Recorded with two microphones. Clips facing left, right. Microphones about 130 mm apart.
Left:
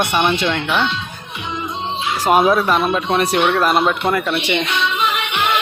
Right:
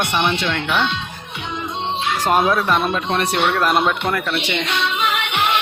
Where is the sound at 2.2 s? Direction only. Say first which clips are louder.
Left 4 dB; 10° left (ahead or behind).